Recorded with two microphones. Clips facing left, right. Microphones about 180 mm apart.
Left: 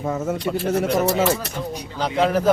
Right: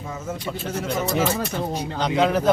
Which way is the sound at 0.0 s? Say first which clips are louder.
Left 7 dB; 60° left (ahead or behind).